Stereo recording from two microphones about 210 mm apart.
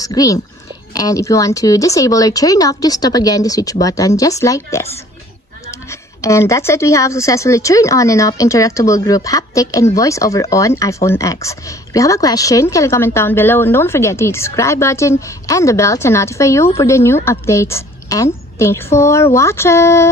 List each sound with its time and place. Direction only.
0.0 s a woman's voice: 15° left (ahead or behind)
5.9 s a woman's voice: 15° left (ahead or behind)